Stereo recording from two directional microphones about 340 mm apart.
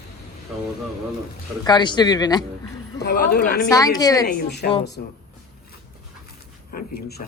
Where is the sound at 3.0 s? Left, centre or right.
Left.